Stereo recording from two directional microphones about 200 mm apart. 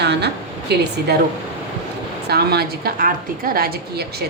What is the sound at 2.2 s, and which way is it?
A woman's voice, 55° right (ahead or behind).